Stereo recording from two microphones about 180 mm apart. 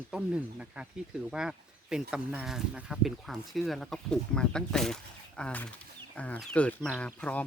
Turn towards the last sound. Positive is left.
turn(degrees=5)  # may be behind; listen again after turning